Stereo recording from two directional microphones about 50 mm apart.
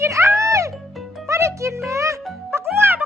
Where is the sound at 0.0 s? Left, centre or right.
Right.